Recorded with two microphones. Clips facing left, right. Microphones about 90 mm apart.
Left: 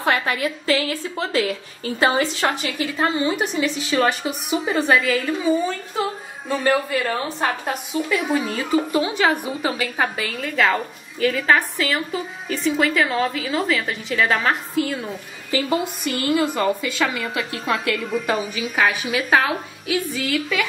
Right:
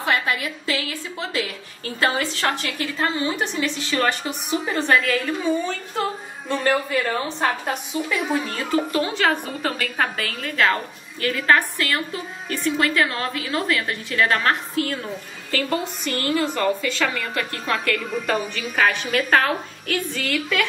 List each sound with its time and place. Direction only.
0.0 s a woman's voice: 40° left (ahead or behind)
2.0 s a woman's voice: 15° left (ahead or behind)